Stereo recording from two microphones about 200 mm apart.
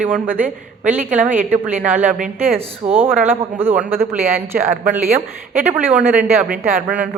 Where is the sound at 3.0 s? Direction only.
10° right (ahead or behind).